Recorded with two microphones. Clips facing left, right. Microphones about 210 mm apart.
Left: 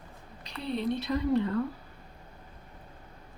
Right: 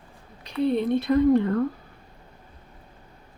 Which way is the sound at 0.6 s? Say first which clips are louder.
Right 9 dB; 55° right (ahead or behind).